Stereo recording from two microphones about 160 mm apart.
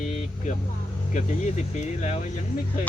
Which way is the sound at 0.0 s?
45° left (ahead or behind).